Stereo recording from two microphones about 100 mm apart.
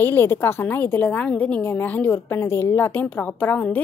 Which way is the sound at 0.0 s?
20° left (ahead or behind).